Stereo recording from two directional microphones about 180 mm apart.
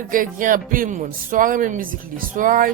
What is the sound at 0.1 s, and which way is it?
Speech, 50° right (ahead or behind).